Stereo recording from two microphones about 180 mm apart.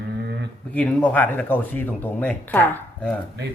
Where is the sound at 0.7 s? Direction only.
10° left (ahead or behind).